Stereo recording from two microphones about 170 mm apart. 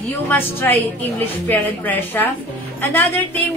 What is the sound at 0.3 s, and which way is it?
A woman's voice, 10° left (ahead or behind).